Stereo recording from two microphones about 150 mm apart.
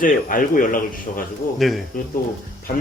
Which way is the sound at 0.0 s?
70° left (ahead or behind).